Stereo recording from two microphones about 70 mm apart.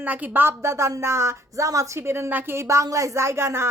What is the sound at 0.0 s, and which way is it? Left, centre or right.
A woman's voice, right.